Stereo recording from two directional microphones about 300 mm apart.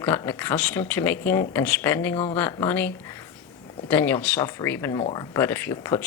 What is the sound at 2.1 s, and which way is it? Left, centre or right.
Speech, left.